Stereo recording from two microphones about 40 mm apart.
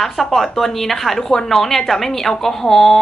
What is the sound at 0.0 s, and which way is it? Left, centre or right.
A woman's voice, centre.